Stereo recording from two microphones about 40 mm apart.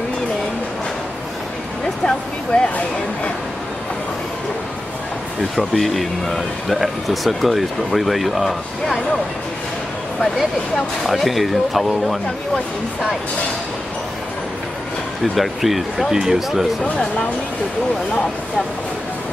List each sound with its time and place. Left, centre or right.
2.0 s a sound: left
5.6 s speech: centre
11.1 s speech: centre
15.3 s speech: centre